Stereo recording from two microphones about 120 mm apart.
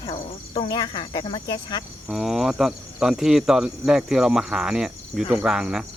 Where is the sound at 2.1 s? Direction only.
5° right (ahead or behind).